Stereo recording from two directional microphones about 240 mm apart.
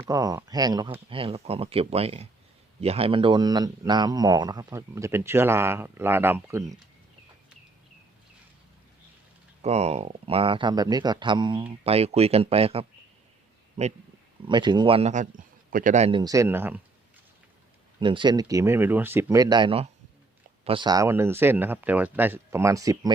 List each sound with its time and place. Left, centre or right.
0.1 s a man's voice: centre
1.1 s a man's voice: right
9.6 s speech: right; by 16.8 s centre
18.0 s a man's voice: centre